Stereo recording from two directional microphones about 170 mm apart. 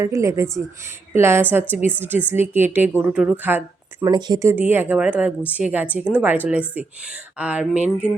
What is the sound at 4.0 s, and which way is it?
Speech, 25° right (ahead or behind).